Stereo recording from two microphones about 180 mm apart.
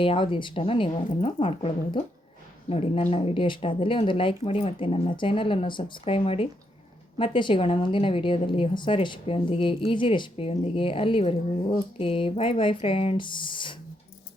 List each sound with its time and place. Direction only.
0.0 s a woman's voice: 30° left (ahead or behind)